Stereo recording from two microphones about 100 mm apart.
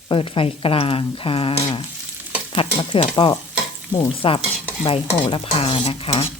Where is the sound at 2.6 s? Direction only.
60° left (ahead or behind).